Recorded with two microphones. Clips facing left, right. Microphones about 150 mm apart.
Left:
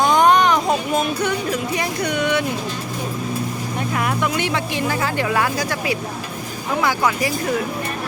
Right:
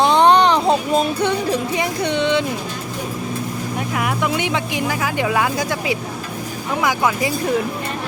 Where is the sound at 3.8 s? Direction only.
10° right (ahead or behind).